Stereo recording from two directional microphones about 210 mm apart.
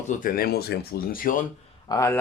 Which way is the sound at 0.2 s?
45° left (ahead or behind).